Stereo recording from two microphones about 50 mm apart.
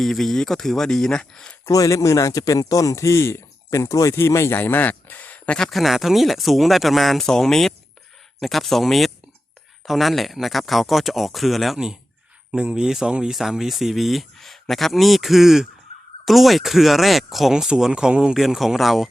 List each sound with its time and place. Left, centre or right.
0.0 s speech: centre
1.6 s a man's voice: left
4.5 s speech: left
5.7 s speech: centre
12.5 s speech: centre
18.3 s speech: centre